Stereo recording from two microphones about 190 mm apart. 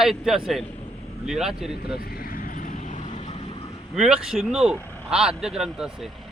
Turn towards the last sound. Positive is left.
turn(degrees=-5)  # may be behind; listen again after turning